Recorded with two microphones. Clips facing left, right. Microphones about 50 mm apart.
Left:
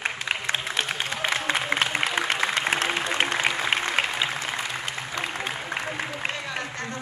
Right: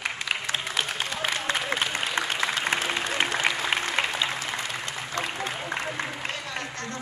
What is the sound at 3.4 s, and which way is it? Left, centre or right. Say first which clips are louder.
Applause: left 1 dB; centre.